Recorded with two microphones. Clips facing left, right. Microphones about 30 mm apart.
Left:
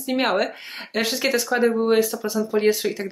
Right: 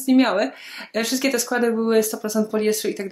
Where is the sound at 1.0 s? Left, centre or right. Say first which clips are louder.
Even; centre.